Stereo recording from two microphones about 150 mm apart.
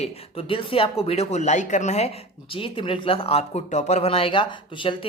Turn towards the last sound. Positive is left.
turn(degrees=35)  # may be behind; listen again after turning